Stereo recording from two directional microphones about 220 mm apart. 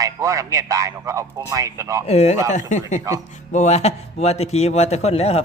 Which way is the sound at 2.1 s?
30° left (ahead or behind).